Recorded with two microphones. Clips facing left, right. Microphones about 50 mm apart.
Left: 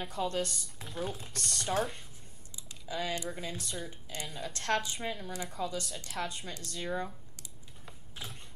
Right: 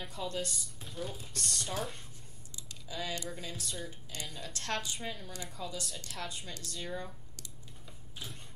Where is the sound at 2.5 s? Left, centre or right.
Centre.